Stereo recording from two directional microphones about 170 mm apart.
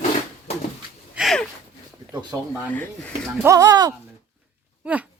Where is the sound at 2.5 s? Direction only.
10° left (ahead or behind).